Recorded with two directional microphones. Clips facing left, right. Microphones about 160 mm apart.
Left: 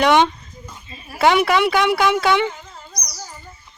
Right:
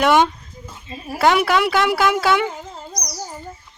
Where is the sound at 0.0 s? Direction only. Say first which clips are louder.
Even; 5° right (ahead or behind).